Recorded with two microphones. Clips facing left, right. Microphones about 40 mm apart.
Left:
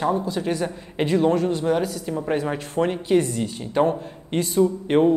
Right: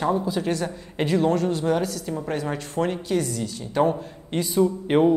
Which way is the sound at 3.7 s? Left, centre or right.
Centre.